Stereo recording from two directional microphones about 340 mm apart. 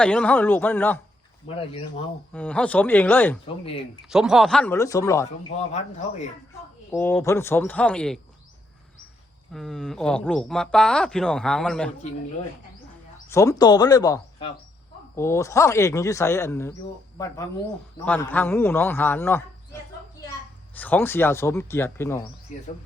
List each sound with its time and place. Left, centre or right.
0.0 s speech: centre
1.5 s speech: centre
2.3 s speech: centre
6.9 s speech: centre
9.5 s speech: centre
13.2 s speech: centre
20.7 s speech: centre